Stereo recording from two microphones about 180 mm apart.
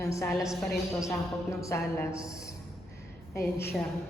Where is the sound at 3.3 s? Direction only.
15° left (ahead or behind).